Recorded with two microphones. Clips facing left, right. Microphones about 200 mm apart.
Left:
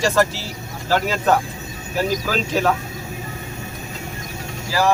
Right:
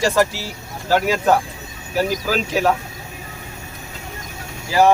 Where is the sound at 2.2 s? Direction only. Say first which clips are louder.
Right 1 dB; 10° right (ahead or behind).